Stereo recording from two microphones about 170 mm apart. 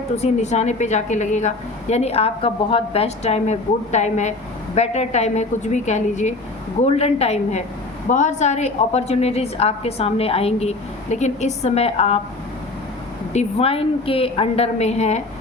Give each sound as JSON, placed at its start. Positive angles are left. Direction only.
{"t": 0.2, "sound": "a woman's voice", "side_deg": 40}
{"t": 13.3, "sound": "a woman's voice", "side_deg": 35}